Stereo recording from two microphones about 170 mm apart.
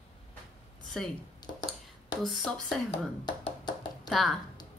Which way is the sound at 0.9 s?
5° left (ahead or behind).